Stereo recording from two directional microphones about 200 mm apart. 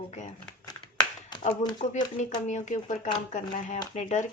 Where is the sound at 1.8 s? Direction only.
35° left (ahead or behind).